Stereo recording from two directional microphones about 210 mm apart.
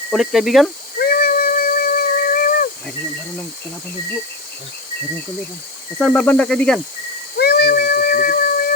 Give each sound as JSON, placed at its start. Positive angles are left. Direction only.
{"t": 0.1, "sound": "speech", "side_deg": 0}
{"t": 0.9, "sound": "a sound", "side_deg": 45}
{"t": 6.0, "sound": "speech", "side_deg": 5}
{"t": 7.3, "sound": "cat", "side_deg": 50}